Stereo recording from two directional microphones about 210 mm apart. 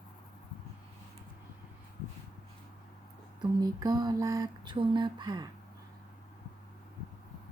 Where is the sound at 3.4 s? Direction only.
20° right (ahead or behind).